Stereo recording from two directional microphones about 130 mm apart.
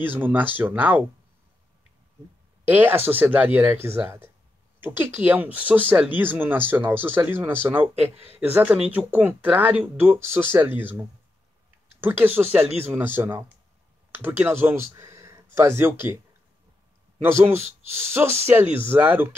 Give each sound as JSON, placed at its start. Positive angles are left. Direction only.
{"t": 0.0, "sound": "speech", "side_deg": -15}
{"t": 2.6, "sound": "speech", "side_deg": -15}
{"t": 17.2, "sound": "speech", "side_deg": -20}